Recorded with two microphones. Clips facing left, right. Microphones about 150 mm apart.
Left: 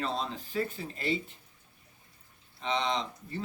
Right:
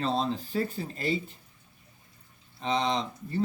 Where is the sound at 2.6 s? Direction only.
35° right (ahead or behind).